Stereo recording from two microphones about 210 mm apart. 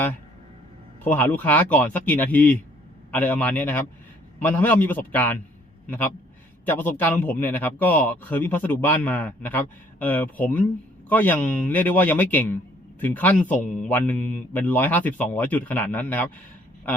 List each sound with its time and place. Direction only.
1.0 s a man's voice: 10° left (ahead or behind)
6.7 s a man's voice: 10° left (ahead or behind)